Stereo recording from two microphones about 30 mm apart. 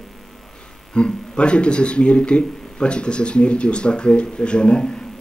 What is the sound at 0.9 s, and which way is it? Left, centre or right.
Speech, left.